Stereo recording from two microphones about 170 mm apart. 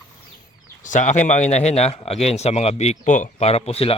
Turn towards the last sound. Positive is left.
turn(degrees=35)  # may be behind; listen again after turning